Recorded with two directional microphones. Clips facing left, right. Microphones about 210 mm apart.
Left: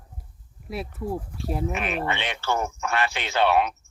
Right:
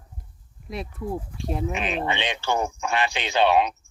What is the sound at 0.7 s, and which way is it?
Speech, 5° left (ahead or behind).